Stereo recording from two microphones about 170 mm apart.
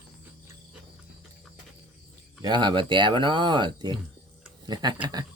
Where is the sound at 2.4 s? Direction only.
25° right (ahead or behind).